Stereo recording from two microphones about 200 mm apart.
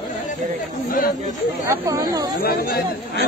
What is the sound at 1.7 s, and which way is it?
Speech, 20° right (ahead or behind).